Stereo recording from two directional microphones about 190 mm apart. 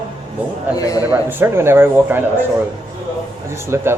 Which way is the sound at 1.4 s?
15° right (ahead or behind).